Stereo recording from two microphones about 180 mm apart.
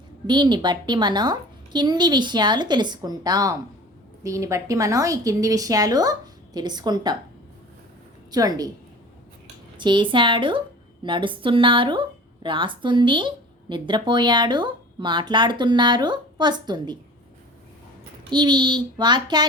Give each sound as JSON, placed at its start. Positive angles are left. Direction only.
{"t": 0.3, "sound": "a woman's voice", "side_deg": -25}
{"t": 8.3, "sound": "a woman's voice", "side_deg": -20}
{"t": 9.7, "sound": "a woman's voice", "side_deg": -25}
{"t": 18.3, "sound": "a woman's voice", "side_deg": -25}